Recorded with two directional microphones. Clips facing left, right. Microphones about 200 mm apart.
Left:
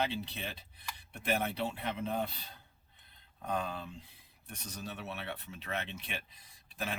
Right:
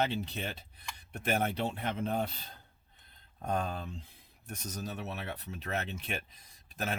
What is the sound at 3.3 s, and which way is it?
Speech, 45° right (ahead or behind).